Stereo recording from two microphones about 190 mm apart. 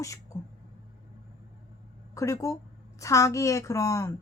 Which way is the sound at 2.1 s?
15° left (ahead or behind).